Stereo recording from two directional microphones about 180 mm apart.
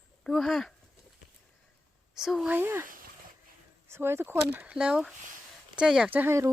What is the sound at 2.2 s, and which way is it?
Speech, centre (ahead or behind).